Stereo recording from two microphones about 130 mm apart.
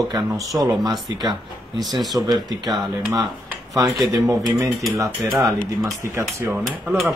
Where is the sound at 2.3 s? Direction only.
35° right (ahead or behind).